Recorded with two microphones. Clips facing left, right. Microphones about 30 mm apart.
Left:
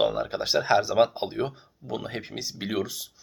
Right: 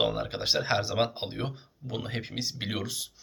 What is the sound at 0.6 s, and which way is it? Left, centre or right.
Speech, right.